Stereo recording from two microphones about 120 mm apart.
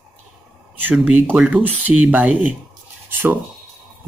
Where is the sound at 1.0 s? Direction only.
15° right (ahead or behind).